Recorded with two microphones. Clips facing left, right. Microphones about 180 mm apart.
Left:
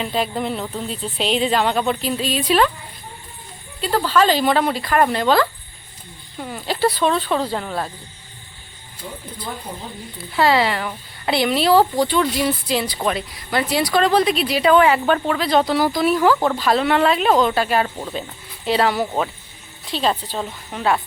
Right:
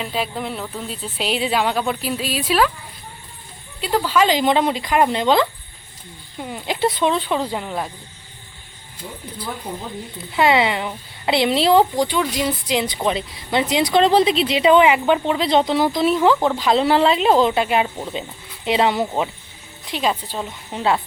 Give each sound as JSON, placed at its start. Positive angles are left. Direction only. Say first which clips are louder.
{"t": 0.0, "sound": "a woman's voice", "louder": "left 3 dB", "side_deg": -5}
{"t": 3.8, "sound": "speech", "louder": "even", "side_deg": -10}
{"t": 10.3, "sound": "speech", "louder": "even", "side_deg": -20}
{"t": 16.8, "sound": "speech", "louder": "right 2 dB", "side_deg": -30}
{"t": 20.7, "sound": "speech", "louder": "even", "side_deg": -25}